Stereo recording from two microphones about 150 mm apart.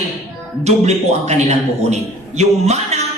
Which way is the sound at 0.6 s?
50° right (ahead or behind).